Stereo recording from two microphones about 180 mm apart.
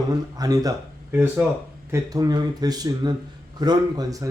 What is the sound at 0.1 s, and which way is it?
Speech, 20° right (ahead or behind).